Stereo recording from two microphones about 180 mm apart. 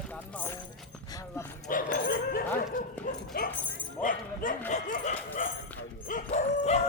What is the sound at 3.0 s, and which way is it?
Bow-wow, 50° left (ahead or behind).